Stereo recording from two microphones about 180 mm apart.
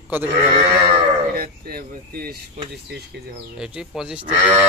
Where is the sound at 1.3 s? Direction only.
55° right (ahead or behind).